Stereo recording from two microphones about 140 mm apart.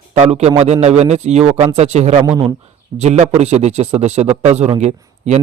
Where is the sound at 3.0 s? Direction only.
55° right (ahead or behind).